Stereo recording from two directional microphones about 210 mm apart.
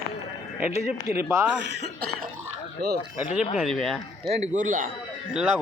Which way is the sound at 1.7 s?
50° right (ahead or behind).